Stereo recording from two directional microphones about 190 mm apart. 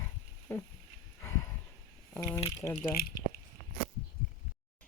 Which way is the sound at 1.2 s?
15° left (ahead or behind).